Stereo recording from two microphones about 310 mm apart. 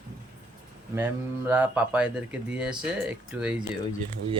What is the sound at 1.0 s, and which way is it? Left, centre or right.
Speech, centre.